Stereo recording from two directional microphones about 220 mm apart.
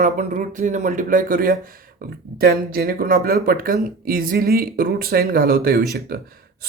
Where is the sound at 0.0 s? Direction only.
35° right (ahead or behind).